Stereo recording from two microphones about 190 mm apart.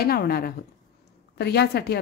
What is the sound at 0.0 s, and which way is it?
A woman's voice, 55° left (ahead or behind).